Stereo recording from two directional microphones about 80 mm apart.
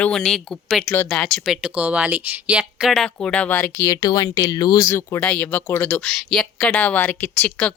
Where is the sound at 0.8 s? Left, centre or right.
Left.